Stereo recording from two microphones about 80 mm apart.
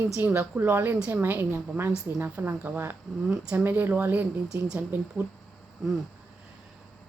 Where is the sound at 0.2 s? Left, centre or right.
Right.